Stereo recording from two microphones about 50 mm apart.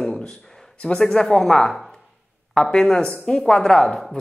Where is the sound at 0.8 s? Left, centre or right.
Left.